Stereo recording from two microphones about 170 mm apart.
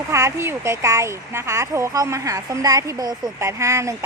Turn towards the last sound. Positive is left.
turn(degrees=-15)  # may be behind; listen again after turning